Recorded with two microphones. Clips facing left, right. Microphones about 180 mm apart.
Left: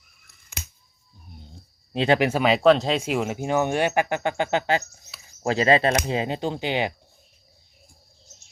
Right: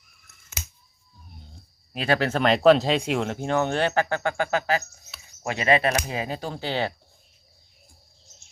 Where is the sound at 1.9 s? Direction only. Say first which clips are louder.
Left 3 dB; 25° left (ahead or behind).